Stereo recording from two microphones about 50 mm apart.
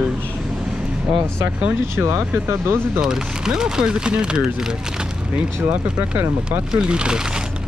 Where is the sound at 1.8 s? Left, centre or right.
Right.